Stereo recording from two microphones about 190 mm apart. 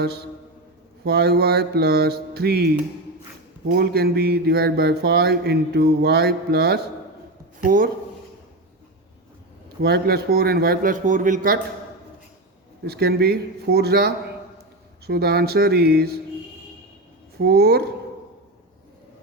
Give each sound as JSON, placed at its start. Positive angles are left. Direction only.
{"t": 1.0, "sound": "speech", "side_deg": -55}
{"t": 3.7, "sound": "a man's voice", "side_deg": -55}
{"t": 9.8, "sound": "a man's voice", "side_deg": -55}
{"t": 12.8, "sound": "speech", "side_deg": -55}
{"t": 17.3, "sound": "speech", "side_deg": -55}